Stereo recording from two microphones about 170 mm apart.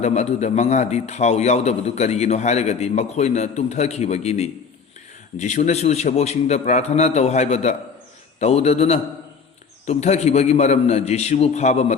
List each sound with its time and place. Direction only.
0.0 s a man's voice: 40° left (ahead or behind)